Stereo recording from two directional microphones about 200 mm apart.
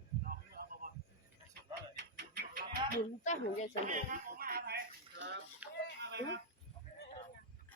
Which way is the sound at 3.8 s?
40° right (ahead or behind).